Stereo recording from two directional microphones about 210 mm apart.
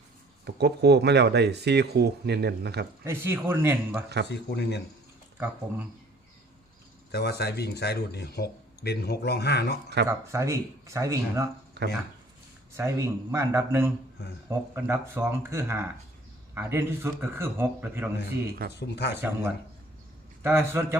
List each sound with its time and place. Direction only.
0.4 s speech: 50° right (ahead or behind)
3.0 s a man's voice: 10° right (ahead or behind)
4.3 s speech: 55° left (ahead or behind)
7.1 s speech: 50° left (ahead or behind)
10.1 s a man's voice: 15° right (ahead or behind)
11.8 s speech: 50° right (ahead or behind)
12.7 s a man's voice: 15° right (ahead or behind)
18.8 s speech: 55° left (ahead or behind)
19.1 s a man's voice: 10° right (ahead or behind)